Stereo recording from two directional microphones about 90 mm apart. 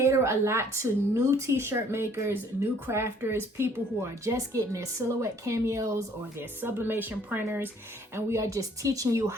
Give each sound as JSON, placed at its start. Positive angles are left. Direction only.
{"t": 0.0, "sound": "speech", "side_deg": -30}
{"t": 6.6, "sound": "a woman's voice", "side_deg": -25}